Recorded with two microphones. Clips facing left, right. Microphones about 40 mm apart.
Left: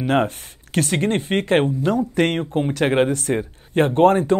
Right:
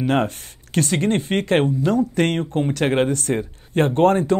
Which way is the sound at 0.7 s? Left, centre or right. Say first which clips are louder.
Even; left.